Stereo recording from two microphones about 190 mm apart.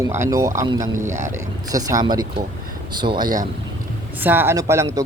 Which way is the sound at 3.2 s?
45° right (ahead or behind).